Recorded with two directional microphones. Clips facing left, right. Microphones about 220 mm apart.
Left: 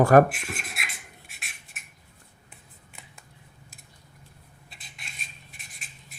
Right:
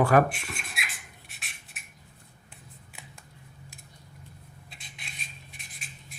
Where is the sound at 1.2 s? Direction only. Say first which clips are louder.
Left 1 dB; centre (ahead or behind).